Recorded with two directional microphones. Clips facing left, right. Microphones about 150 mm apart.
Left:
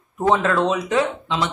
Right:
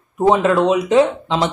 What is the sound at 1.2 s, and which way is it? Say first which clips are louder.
Speech: right 5 dB; 35° right (ahead or behind).